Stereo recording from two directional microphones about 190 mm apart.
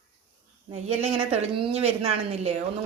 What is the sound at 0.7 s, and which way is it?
A woman's voice, 35° right (ahead or behind).